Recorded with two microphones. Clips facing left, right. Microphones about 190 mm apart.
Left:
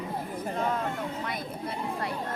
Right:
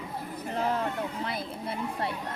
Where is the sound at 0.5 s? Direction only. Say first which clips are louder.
Right 2 dB; 30° right (ahead or behind).